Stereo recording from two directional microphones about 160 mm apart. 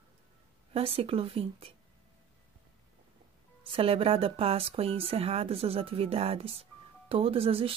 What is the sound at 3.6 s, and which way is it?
Speech, 35° right (ahead or behind).